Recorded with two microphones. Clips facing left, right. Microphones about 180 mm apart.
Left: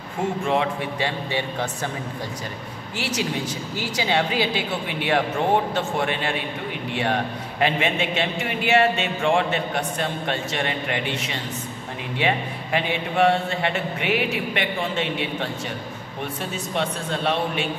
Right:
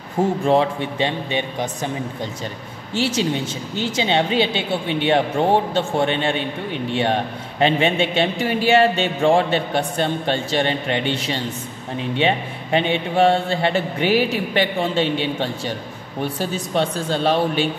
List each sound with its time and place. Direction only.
0.5 s a woman's voice: 30° right (ahead or behind)
2.9 s a woman's voice: 25° right (ahead or behind)